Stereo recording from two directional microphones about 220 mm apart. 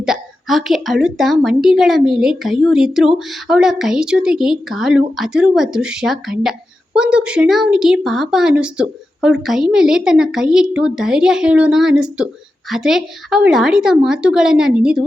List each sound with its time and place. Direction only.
0.0 s a woman's voice: centre (ahead or behind)